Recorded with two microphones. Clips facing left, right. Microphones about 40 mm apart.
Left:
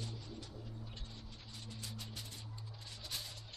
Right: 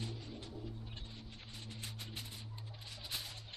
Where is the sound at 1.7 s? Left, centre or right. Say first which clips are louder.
Right 1 dB; right.